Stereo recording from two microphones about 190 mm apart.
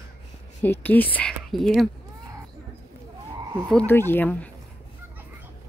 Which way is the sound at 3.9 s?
10° left (ahead or behind).